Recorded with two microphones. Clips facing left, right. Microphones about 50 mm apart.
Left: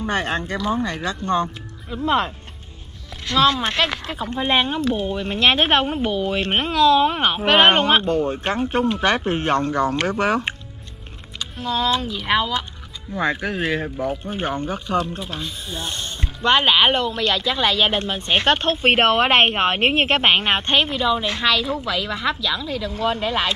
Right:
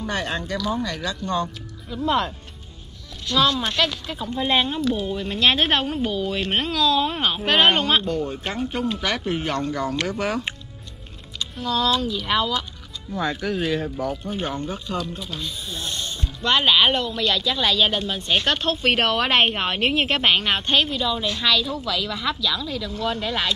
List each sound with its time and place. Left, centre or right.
0.0 s speech: left
11.3 s speech: left